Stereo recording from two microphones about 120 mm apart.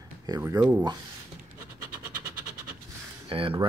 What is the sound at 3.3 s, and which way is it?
Speech, 50° right (ahead or behind).